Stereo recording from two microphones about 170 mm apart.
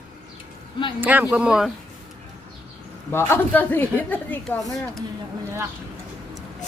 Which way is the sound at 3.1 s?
15° left (ahead or behind).